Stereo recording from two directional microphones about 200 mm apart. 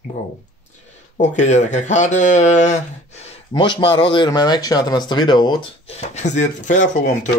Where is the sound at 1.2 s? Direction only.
35° left (ahead or behind).